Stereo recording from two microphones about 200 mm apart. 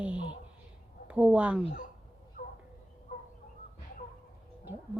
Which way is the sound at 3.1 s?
40° left (ahead or behind).